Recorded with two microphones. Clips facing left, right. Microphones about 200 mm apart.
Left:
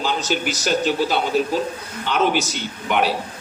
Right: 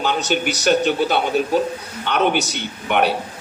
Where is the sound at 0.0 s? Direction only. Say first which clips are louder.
Right 2 dB; 60° right (ahead or behind).